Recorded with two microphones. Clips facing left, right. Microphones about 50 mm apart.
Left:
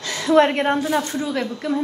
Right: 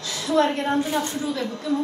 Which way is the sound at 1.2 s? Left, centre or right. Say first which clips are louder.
Left 3 dB; left.